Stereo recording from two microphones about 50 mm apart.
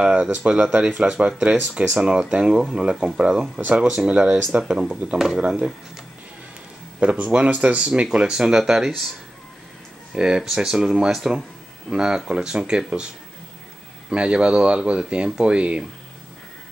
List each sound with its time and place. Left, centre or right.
0.0 s a sound: centre
0.4 s speech: centre
7.0 s speech: right; by 8.9 s centre
10.1 s speech: centre
14.1 s speech: right